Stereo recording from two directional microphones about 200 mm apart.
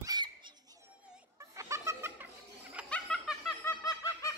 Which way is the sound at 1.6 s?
15° right (ahead or behind).